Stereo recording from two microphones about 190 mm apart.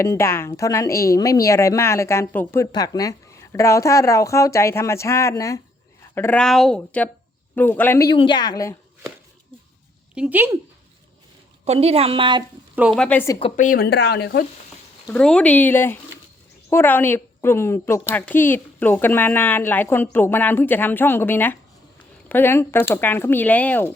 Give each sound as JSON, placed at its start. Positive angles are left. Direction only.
{"t": 0.0, "sound": "a woman's voice", "side_deg": 15}
{"t": 10.2, "sound": "speech", "side_deg": -10}
{"t": 11.6, "sound": "speech", "side_deg": -35}
{"t": 12.7, "sound": "speech", "side_deg": -5}
{"t": 13.0, "sound": "a woman's voice", "side_deg": 10}
{"t": 13.6, "sound": "speech", "side_deg": 50}
{"t": 15.0, "sound": "a woman's voice", "side_deg": 5}